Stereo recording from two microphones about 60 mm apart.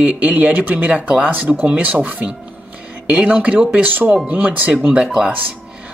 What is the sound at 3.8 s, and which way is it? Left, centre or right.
Speech, right.